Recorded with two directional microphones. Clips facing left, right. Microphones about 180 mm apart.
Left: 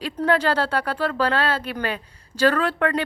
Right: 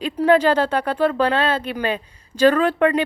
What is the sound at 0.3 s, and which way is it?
Speech, 20° right (ahead or behind).